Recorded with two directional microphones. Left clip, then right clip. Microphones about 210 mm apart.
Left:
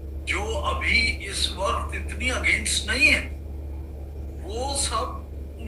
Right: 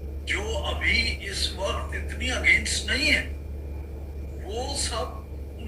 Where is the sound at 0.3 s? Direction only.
5° left (ahead or behind).